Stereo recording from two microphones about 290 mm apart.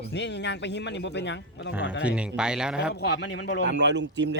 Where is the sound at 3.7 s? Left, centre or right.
Right.